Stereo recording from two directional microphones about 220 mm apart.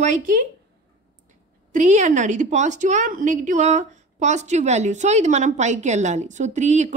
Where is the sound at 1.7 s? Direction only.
30° right (ahead or behind).